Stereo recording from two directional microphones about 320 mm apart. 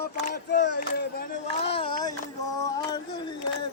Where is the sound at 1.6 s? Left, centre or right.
Centre.